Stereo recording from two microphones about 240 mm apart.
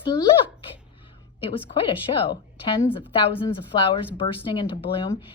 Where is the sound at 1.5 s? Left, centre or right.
Left.